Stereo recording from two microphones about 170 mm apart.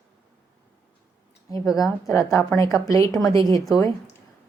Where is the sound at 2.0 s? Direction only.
20° left (ahead or behind).